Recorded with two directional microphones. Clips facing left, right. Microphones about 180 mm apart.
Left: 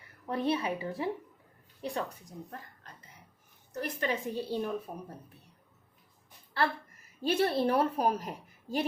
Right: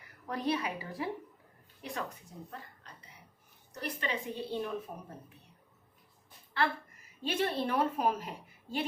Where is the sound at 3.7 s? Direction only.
45° left (ahead or behind).